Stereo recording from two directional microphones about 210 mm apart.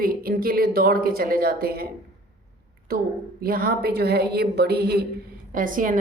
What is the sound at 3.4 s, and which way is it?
A woman's voice, 45° right (ahead or behind).